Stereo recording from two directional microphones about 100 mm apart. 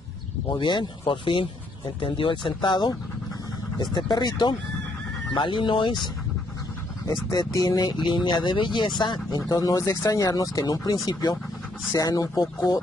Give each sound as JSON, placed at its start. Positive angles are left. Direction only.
{"t": 0.5, "sound": "speech", "side_deg": 55}
{"t": 7.1, "sound": "speech", "side_deg": 35}